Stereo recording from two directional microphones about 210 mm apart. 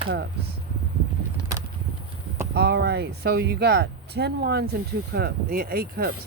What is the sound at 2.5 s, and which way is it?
Speech, 50° right (ahead or behind).